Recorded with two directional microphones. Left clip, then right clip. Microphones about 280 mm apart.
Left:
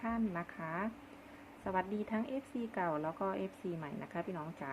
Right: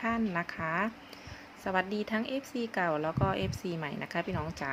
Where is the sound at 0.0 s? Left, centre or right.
Centre.